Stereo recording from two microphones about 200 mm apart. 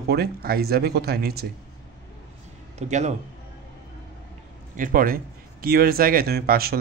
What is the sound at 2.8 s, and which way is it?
Speech, 35° right (ahead or behind).